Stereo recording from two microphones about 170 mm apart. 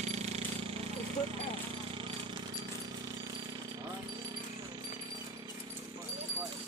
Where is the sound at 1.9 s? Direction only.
30° right (ahead or behind).